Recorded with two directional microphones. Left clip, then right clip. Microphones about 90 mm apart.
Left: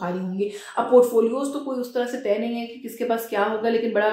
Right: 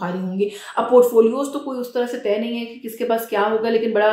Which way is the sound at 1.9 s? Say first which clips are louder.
Right 3 dB; 20° right (ahead or behind).